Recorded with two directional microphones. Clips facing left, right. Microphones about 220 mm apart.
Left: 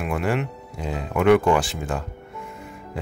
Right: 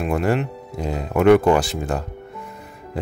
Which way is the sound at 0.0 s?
40° right (ahead or behind).